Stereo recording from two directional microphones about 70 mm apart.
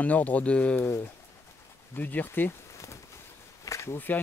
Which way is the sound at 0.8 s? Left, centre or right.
Left.